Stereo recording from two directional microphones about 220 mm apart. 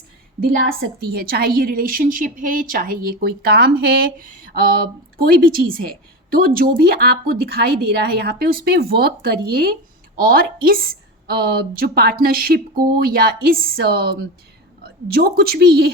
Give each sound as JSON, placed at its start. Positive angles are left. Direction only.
{"t": 0.3, "sound": "a woman's voice", "side_deg": -40}